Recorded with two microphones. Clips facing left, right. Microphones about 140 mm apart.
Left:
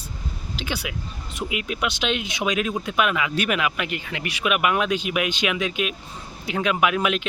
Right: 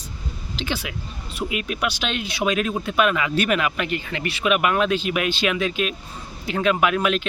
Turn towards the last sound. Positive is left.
turn(degrees=15)  # may be behind; listen again after turning